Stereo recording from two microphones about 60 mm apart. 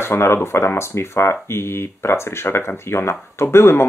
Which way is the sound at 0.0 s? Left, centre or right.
Left.